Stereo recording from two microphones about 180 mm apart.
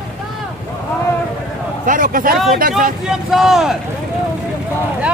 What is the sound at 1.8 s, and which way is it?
Speech, 50° right (ahead or behind).